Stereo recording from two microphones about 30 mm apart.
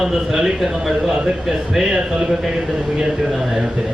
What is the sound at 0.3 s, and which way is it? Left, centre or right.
A man's voice, centre.